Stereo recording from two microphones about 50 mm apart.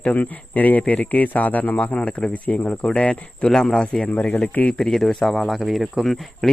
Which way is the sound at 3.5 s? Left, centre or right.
Centre.